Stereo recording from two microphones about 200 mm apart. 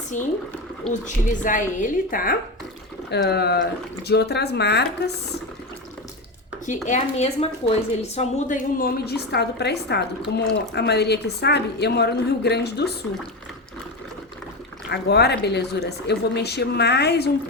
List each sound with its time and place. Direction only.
0.1 s a woman's voice: 40° left (ahead or behind); by 5.1 s 55° left (ahead or behind)
6.8 s a woman's voice: 35° left (ahead or behind); by 12.9 s 55° left (ahead or behind)
14.8 s a woman's voice: 55° left (ahead or behind)